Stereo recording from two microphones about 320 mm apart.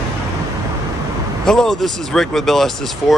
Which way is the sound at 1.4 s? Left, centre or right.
Centre.